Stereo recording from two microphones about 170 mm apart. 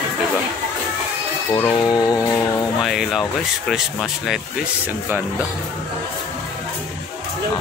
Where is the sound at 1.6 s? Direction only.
20° left (ahead or behind).